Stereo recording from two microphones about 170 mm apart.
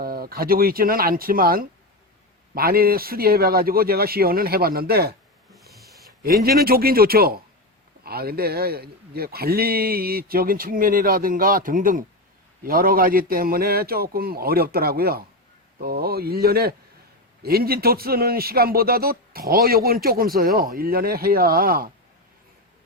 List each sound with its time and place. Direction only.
0.0 s a man's voice: 60° right (ahead or behind)
5.5 s a sound: centre (ahead or behind)
6.4 s a man's voice: 60° right (ahead or behind)